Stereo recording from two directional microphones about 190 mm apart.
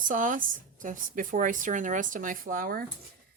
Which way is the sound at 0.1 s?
45° right (ahead or behind).